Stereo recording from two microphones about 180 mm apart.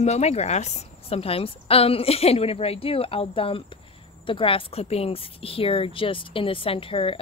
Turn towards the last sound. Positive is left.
turn(degrees=30)  # may be behind; listen again after turning